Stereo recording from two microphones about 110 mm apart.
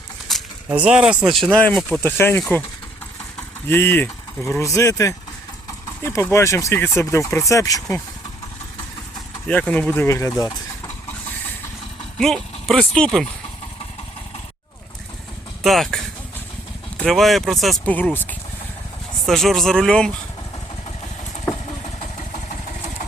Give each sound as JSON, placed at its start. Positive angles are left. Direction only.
{"t": 0.3, "sound": "a sound", "side_deg": 0}
{"t": 0.7, "sound": "speech", "side_deg": -10}
{"t": 1.5, "sound": "speech", "side_deg": 10}
{"t": 3.7, "sound": "speech", "side_deg": 20}
{"t": 9.5, "sound": "speech", "side_deg": 10}
{"t": 10.1, "sound": "speech", "side_deg": 30}
{"t": 12.2, "sound": "speech", "side_deg": 5}
{"t": 15.6, "sound": "speech", "side_deg": 0}
{"t": 17.0, "sound": "speech", "side_deg": 0}
{"t": 17.8, "sound": "speech", "side_deg": 15}
{"t": 19.2, "sound": "speech", "side_deg": 0}